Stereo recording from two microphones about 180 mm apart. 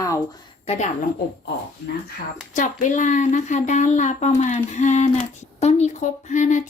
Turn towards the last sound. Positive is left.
turn(degrees=40)  # may be behind; listen again after turning